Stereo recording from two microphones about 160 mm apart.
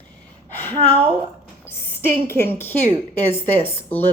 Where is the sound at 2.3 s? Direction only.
15° left (ahead or behind).